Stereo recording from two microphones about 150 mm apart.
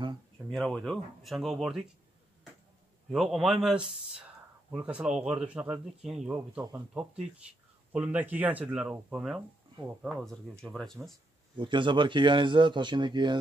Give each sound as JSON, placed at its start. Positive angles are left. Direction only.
{"t": 0.5, "sound": "speech", "side_deg": 5}
{"t": 3.1, "sound": "speech", "side_deg": 0}
{"t": 11.5, "sound": "speech", "side_deg": -35}